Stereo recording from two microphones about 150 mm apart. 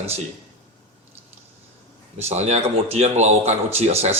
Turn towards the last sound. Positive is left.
turn(degrees=-45)  # may be behind; listen again after turning